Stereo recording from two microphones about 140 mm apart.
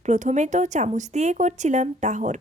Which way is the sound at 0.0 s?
60° right (ahead or behind).